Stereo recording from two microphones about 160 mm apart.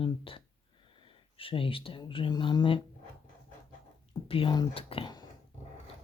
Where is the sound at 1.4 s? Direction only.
35° left (ahead or behind).